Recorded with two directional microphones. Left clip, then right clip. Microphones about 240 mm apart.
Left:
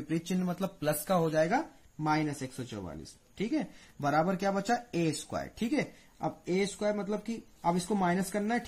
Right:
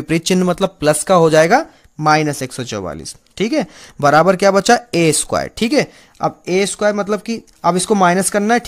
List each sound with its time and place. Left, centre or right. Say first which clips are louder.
0.1 s speech: right 19 dB; right